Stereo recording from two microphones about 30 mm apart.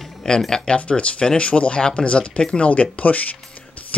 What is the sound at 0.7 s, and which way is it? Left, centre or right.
Speech, left.